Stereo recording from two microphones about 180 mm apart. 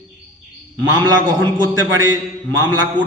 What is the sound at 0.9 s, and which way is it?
A man's voice, 25° right (ahead or behind).